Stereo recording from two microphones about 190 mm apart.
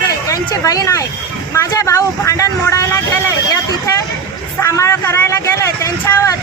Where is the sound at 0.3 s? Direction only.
20° left (ahead or behind).